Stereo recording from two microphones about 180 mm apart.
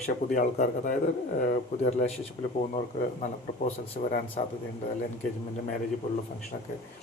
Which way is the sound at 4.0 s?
45° left (ahead or behind).